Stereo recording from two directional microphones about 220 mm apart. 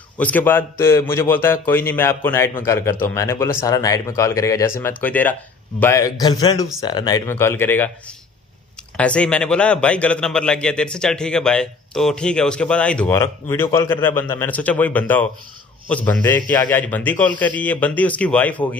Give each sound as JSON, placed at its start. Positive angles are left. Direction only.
{"t": 0.2, "sound": "a man's voice", "side_deg": 10}
{"t": 8.9, "sound": "a man's voice", "side_deg": 5}